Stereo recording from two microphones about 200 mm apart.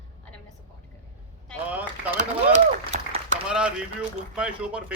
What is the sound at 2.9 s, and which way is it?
Applause, 40° right (ahead or behind).